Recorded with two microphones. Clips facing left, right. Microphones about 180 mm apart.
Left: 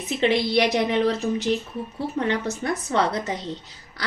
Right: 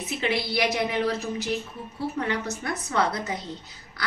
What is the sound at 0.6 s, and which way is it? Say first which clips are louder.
Speech: left 4 dB; 35° left (ahead or behind).